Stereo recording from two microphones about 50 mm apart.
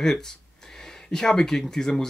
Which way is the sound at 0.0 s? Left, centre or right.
Centre.